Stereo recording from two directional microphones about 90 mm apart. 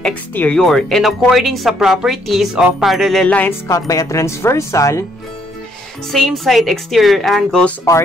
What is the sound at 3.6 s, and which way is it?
Speech, 35° left (ahead or behind).